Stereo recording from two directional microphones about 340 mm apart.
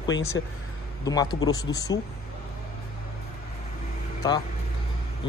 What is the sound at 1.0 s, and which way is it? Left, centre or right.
Speech, centre.